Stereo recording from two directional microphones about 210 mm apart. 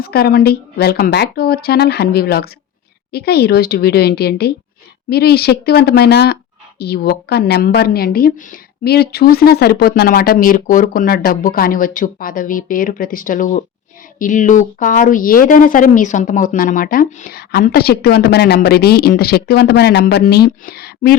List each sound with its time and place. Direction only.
0.0 s speech: 45° left (ahead or behind)